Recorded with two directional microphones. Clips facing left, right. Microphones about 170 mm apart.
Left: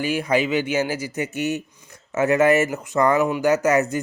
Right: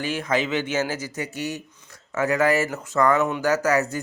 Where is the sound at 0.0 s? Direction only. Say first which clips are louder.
Left 3 dB; 10° left (ahead or behind).